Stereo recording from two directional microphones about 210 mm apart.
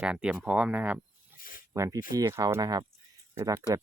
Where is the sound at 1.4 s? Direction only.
40° left (ahead or behind).